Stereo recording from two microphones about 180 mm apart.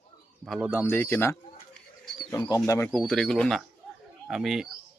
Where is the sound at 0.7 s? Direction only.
10° left (ahead or behind).